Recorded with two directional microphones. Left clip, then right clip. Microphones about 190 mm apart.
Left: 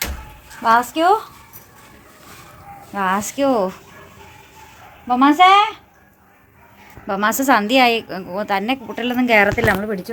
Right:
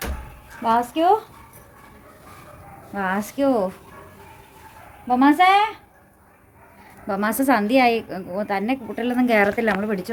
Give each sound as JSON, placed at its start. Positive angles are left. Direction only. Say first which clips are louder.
{"t": 0.6, "sound": "a woman's voice", "louder": "left 4 dB", "side_deg": 0}
{"t": 2.9, "sound": "a woman's voice", "louder": "left 5 dB", "side_deg": 5}
{"t": 3.3, "sound": "speech", "louder": "even", "side_deg": 20}
{"t": 5.0, "sound": "a woman's voice", "louder": "left 4 dB", "side_deg": 10}
{"t": 7.1, "sound": "a woman's voice", "louder": "left 4 dB", "side_deg": 0}